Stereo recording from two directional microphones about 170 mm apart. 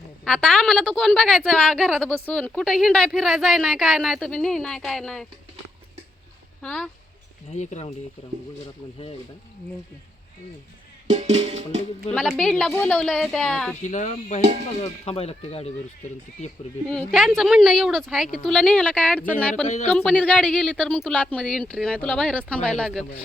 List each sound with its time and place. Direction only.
0.3 s a woman's voice: 5° left (ahead or behind)
6.6 s a woman's voice: 5° left (ahead or behind)
7.5 s speech: 45° left (ahead or behind)
11.1 s music: 40° right (ahead or behind)
12.4 s a woman's voice: 5° left (ahead or behind)
13.8 s speech: 45° left (ahead or behind)
16.9 s a woman's voice: 5° left (ahead or behind)
19.6 s speech: 40° left (ahead or behind)
19.9 s a woman's voice: 5° left (ahead or behind)